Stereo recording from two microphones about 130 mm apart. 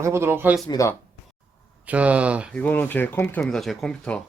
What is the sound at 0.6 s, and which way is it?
Speech, 30° left (ahead or behind).